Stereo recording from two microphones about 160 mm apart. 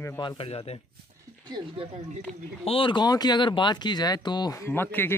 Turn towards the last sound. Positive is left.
turn(degrees=15)  # may be behind; listen again after turning